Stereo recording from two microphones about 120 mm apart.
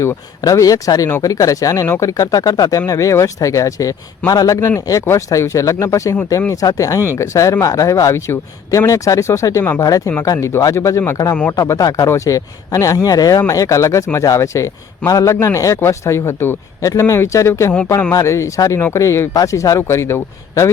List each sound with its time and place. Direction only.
0.0 s a man's voice: 25° left (ahead or behind)